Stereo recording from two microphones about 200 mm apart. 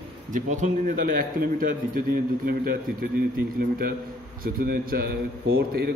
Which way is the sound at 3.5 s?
50° right (ahead or behind).